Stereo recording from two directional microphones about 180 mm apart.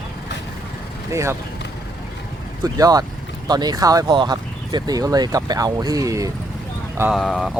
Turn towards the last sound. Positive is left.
turn(degrees=0)  # may be behind; listen again after turning